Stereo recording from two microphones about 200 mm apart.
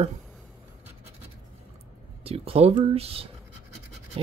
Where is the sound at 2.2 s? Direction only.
30° right (ahead or behind).